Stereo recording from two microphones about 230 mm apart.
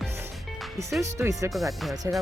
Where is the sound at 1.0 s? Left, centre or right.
Centre.